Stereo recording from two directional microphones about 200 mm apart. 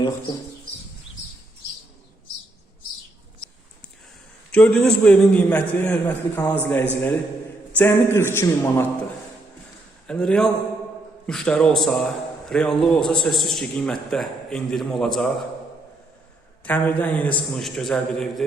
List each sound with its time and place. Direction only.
4.5 s a man's voice: 5° left (ahead or behind)
10.1 s a man's voice: 5° left (ahead or behind)
16.6 s a man's voice: 10° left (ahead or behind)